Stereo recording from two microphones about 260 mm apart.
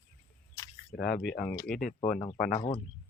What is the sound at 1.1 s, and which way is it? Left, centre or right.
Speech, centre.